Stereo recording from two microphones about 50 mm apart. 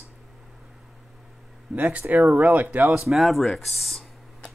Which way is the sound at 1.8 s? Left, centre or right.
Right.